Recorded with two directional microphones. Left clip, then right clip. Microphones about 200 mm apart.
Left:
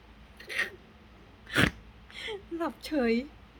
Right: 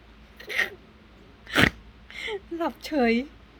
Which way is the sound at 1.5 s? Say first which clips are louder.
Right 5 dB; 10° right (ahead or behind).